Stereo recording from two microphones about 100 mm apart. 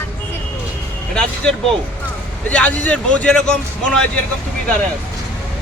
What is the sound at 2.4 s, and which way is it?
Speech, 10° left (ahead or behind).